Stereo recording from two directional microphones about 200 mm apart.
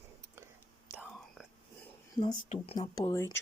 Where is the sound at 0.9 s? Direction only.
5° left (ahead or behind).